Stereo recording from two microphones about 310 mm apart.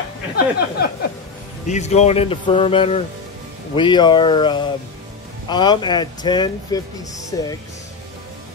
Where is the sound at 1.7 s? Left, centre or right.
Left.